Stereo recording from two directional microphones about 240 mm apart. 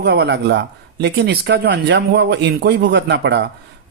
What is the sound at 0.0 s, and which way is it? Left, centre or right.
Speech, right.